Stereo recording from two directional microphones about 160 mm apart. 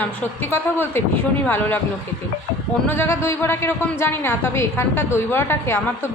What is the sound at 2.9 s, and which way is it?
A woman's voice, 15° left (ahead or behind).